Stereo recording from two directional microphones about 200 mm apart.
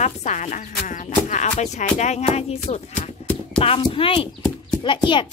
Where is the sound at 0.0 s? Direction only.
35° left (ahead or behind).